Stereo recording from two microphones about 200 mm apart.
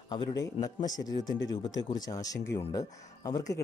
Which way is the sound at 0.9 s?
20° left (ahead or behind).